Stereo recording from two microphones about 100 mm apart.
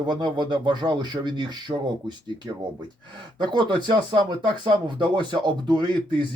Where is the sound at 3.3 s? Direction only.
50° right (ahead or behind).